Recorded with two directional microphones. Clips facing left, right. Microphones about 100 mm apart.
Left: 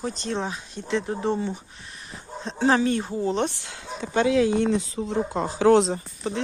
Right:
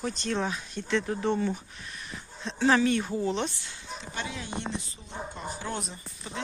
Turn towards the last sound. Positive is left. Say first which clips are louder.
# left 10 dB
turn(degrees=75)  # may be behind; listen again after turning